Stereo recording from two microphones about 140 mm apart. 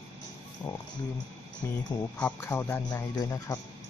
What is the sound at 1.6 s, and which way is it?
Speech, 15° left (ahead or behind).